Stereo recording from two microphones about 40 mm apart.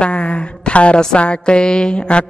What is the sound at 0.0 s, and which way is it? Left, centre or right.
A woman's voice, left.